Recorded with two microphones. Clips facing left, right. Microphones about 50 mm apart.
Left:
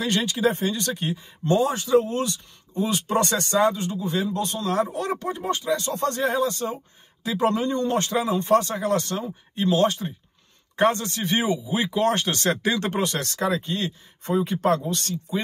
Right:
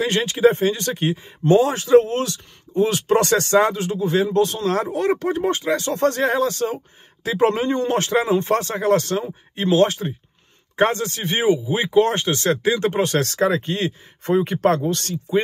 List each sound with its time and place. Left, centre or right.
0.0 s speech: right
7.2 s speech: right
13.0 s speech: right